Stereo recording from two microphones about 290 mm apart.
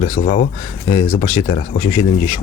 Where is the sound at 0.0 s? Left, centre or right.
Left.